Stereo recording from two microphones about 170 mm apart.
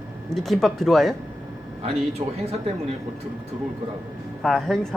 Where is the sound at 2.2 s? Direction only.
35° right (ahead or behind).